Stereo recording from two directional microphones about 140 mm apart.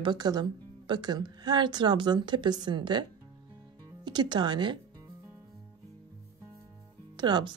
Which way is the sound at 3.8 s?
30° right (ahead or behind).